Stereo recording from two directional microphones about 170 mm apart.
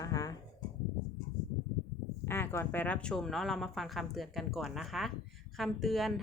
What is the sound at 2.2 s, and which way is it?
A woman's voice, 15° left (ahead or behind).